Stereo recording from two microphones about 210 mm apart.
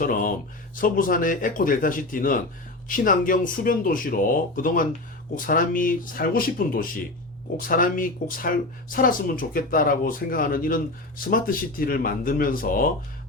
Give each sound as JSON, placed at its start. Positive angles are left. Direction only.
{"t": 0.0, "sound": "speech", "side_deg": 40}